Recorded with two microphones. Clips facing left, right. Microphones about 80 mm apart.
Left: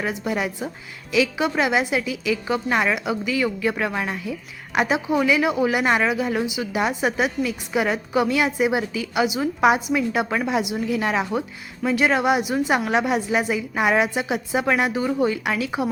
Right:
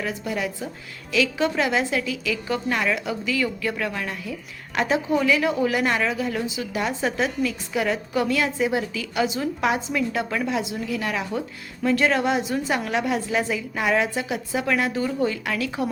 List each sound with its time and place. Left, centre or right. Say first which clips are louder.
0.0 s a woman's voice: left 2 dB; left